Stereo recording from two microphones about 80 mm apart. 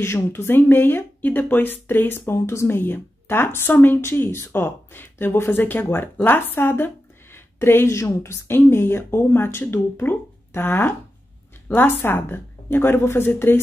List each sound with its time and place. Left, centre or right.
0.0 s a woman's voice: left